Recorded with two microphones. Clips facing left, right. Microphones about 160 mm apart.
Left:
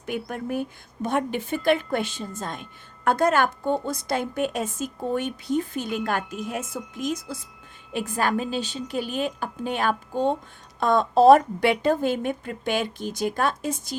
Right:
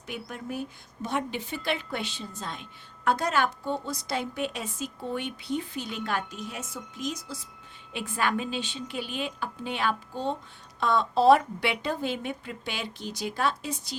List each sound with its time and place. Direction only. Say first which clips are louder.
0.0 s a woman's voice: left 7 dB; 55° left (ahead or behind)
7.9 s a woman's voice: left 4 dB; 40° left (ahead or behind)